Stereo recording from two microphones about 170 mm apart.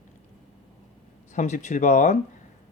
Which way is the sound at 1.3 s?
45° left (ahead or behind).